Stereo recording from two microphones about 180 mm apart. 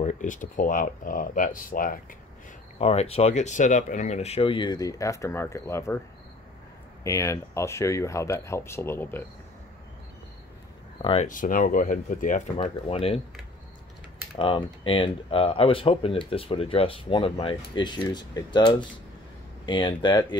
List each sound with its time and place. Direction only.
0.0 s speech: 45° left (ahead or behind)
2.8 s speech: 35° left (ahead or behind); by 5.9 s 15° left (ahead or behind)
7.0 s speech: 15° left (ahead or behind)
11.0 s speech: 30° left (ahead or behind)
11.2 s speech: 50° left (ahead or behind)
12.5 s speech: 30° left (ahead or behind)
14.3 s speech: 25° left (ahead or behind)